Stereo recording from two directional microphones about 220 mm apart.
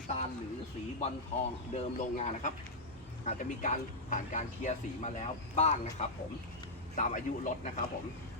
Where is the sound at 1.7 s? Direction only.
30° left (ahead or behind).